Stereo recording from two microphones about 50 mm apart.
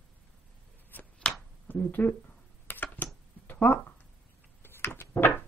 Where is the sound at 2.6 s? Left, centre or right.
Left.